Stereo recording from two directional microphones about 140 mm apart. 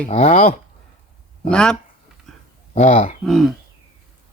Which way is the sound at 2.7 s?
50° left (ahead or behind).